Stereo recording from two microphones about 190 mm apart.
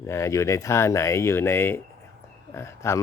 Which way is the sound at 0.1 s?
15° left (ahead or behind).